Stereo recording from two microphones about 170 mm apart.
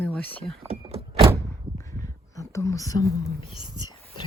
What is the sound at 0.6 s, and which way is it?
Power windows, 35° right (ahead or behind).